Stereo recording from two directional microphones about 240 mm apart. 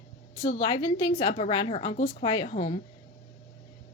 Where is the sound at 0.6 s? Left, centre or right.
Centre.